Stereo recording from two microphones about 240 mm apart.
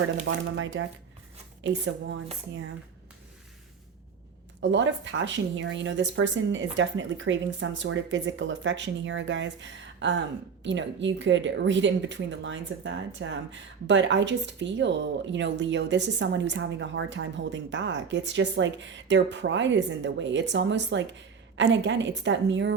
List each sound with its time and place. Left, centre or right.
0.5 s a woman's voice: right
4.6 s a woman's voice: right